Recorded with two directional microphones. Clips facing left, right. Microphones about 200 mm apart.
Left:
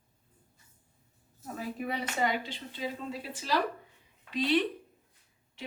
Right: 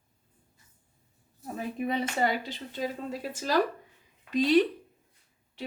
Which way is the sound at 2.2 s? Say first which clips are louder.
Right 2 dB; 40° right (ahead or behind).